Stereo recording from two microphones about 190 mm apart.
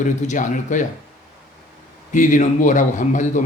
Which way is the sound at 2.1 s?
40° left (ahead or behind).